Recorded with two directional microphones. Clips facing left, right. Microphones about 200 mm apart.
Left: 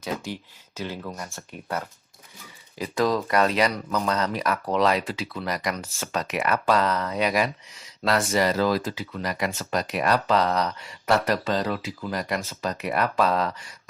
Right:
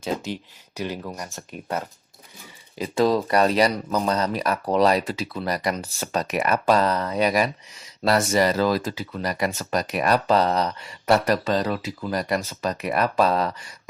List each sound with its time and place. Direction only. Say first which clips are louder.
0.0 s speech: right 3 dB; 25° right (ahead or behind)
0.8 s speech: right 3 dB; 15° right (ahead or behind); by 13.5 s 35° right (ahead or behind)